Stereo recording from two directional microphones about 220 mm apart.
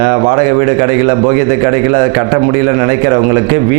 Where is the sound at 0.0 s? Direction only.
20° right (ahead or behind).